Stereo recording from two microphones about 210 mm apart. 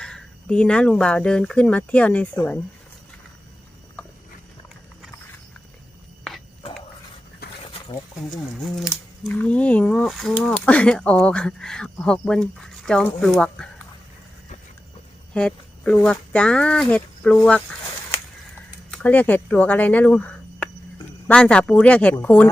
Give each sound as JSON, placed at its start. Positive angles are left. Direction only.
{"t": 0.0, "sound": "speech", "side_deg": 5}
{"t": 7.4, "sound": "a sound", "side_deg": 50}
{"t": 8.6, "sound": "speech", "side_deg": 0}
{"t": 15.3, "sound": "speech", "side_deg": 5}
{"t": 18.9, "sound": "speech", "side_deg": 10}